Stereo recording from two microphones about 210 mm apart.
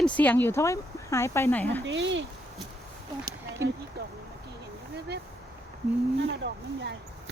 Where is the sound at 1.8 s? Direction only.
65° right (ahead or behind).